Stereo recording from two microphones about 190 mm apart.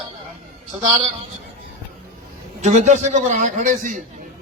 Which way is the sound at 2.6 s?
40° right (ahead or behind).